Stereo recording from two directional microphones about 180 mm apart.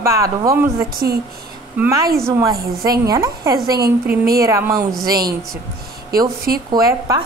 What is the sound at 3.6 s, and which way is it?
Speech, 60° right (ahead or behind).